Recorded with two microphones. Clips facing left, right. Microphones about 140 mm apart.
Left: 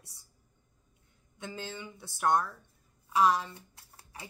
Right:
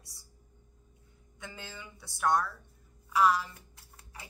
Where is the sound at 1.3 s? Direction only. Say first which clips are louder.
Left 5 dB; 20° left (ahead or behind).